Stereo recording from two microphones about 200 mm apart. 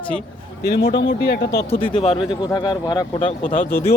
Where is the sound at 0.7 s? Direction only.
55° left (ahead or behind).